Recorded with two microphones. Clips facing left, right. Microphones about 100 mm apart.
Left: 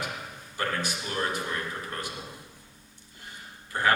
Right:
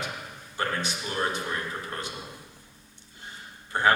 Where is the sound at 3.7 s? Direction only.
25° right (ahead or behind).